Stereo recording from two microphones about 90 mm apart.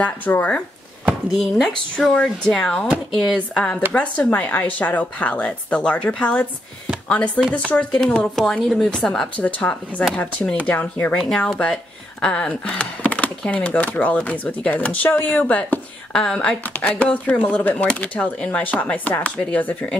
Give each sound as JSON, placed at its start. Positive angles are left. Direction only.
{"t": 0.0, "sound": "speech", "side_deg": 20}
{"t": 1.4, "sound": "speech", "side_deg": 0}
{"t": 3.3, "sound": "speech", "side_deg": 15}
{"t": 10.7, "sound": "speech", "side_deg": 20}
{"t": 11.2, "sound": "speech", "side_deg": 5}